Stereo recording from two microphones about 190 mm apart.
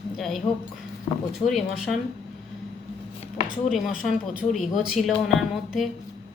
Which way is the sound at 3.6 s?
Centre (ahead or behind).